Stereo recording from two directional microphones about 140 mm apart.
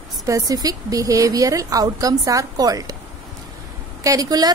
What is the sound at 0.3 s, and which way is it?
A woman's voice, 25° right (ahead or behind).